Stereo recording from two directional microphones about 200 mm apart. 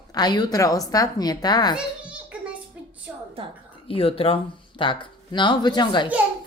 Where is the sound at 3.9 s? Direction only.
30° left (ahead or behind).